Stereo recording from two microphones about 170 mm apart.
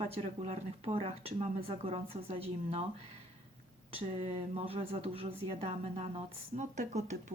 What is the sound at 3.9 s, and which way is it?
Speech, 35° right (ahead or behind).